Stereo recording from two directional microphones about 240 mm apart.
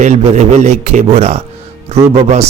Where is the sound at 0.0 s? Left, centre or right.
Right.